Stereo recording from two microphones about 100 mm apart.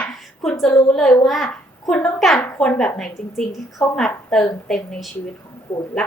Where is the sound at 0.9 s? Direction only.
5° left (ahead or behind).